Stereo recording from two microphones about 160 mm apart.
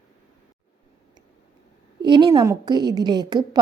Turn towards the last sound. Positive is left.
turn(degrees=-25)  # may be behind; listen again after turning